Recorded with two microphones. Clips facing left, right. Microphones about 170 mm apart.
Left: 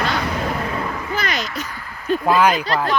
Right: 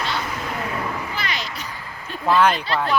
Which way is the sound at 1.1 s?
45° left (ahead or behind).